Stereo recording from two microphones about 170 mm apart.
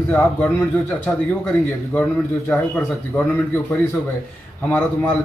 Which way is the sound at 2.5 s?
10° left (ahead or behind).